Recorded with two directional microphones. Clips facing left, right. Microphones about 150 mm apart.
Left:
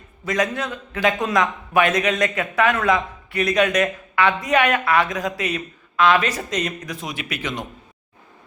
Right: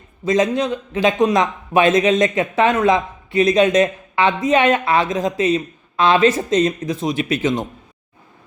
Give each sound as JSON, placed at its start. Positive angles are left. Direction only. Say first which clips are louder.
{"t": 0.3, "sound": "a man's voice", "louder": "right 6 dB", "side_deg": -20}